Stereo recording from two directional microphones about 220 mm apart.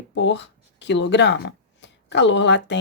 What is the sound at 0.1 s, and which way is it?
Speech, 55° left (ahead or behind).